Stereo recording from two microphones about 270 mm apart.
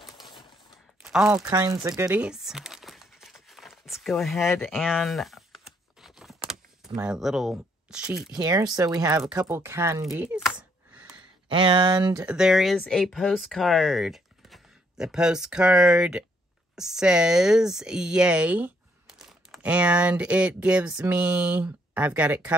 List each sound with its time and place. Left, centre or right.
0.2 s a sound: centre
1.0 s crumpling: centre
7.0 s speech: centre
8.4 s speech: centre
10.9 s a sound: centre
11.4 s speech: centre
12.2 s speech: centre